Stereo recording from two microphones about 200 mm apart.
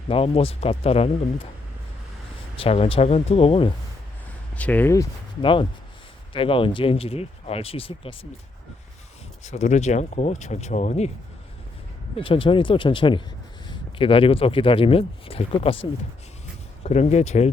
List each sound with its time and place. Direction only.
0.1 s speech: 30° left (ahead or behind)
2.6 s speech: 30° left (ahead or behind)
4.5 s speech: 10° left (ahead or behind)
5.4 s speech: 25° left (ahead or behind)
9.4 s speech: 35° left (ahead or behind)
12.1 s speech: 25° left (ahead or behind)
16.8 s speech: 35° left (ahead or behind)